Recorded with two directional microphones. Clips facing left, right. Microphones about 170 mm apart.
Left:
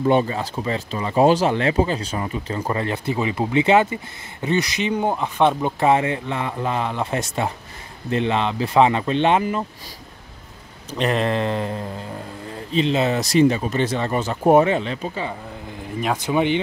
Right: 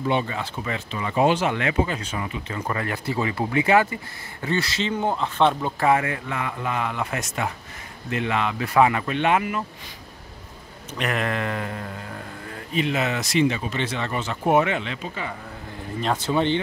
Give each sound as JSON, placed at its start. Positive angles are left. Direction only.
{"t": 0.0, "sound": "speech", "side_deg": 40}
{"t": 11.0, "sound": "speech", "side_deg": 30}
{"t": 16.0, "sound": "speech", "side_deg": 15}